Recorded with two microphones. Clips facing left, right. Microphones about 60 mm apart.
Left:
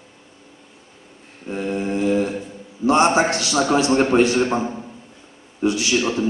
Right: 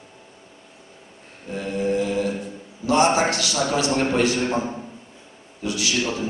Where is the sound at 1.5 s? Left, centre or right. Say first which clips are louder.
Even; left.